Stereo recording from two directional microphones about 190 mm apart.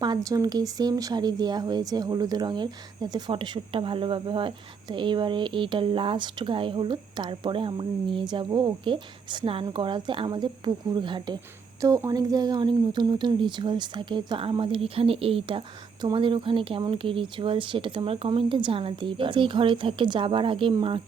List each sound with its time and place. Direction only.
0.0 s speech: 20° right (ahead or behind)